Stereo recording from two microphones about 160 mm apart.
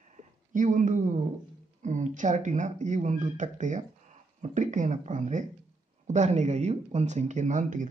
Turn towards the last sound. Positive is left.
turn(degrees=-55)  # may be behind; listen again after turning